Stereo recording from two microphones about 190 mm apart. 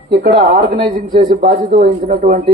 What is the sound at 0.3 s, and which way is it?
Speech, 35° right (ahead or behind).